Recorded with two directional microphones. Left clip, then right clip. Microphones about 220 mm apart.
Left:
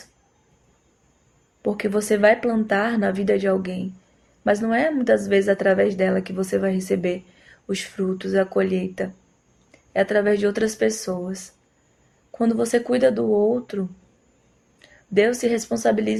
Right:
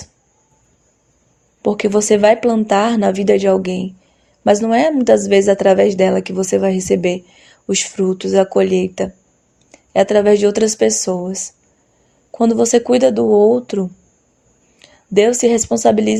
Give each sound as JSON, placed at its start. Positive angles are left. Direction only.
{"t": 1.6, "sound": "a woman's voice", "side_deg": -35}